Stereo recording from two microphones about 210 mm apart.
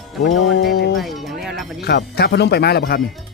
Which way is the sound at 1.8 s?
50° left (ahead or behind).